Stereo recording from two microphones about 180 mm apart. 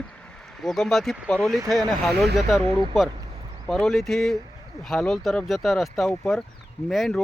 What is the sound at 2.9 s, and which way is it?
Speech, centre (ahead or behind).